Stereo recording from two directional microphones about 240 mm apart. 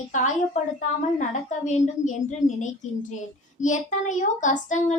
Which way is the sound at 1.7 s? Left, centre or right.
Left.